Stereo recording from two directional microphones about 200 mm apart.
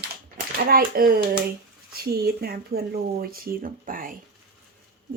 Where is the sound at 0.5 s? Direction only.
50° right (ahead or behind).